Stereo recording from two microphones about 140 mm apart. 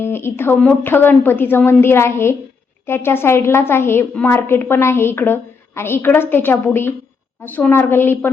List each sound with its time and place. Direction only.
0.0 s a woman's voice: 15° left (ahead or behind)